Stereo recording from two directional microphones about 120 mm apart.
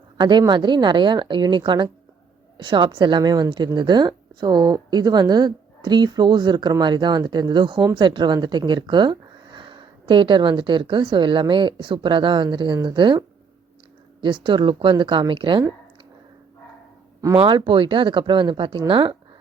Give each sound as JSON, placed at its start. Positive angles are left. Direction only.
{"t": 0.2, "sound": "a woman's voice", "side_deg": -40}
{"t": 17.3, "sound": "a woman's voice", "side_deg": -45}